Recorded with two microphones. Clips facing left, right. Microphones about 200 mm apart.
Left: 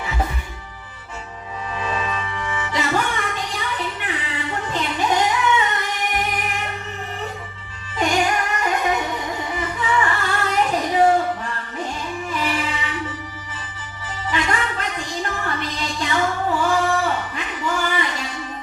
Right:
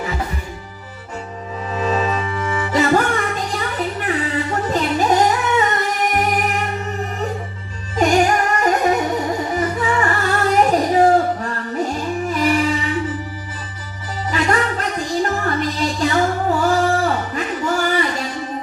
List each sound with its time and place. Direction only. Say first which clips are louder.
1.7 s music: right 7 dB; 40° right (ahead or behind)
7.9 s music: right 5 dB; 40° right (ahead or behind)
12.3 s music: right 7 dB; 40° right (ahead or behind)
14.3 s music: right 5 dB; 40° right (ahead or behind)